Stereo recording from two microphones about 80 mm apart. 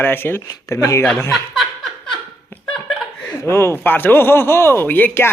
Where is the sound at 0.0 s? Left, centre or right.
Left.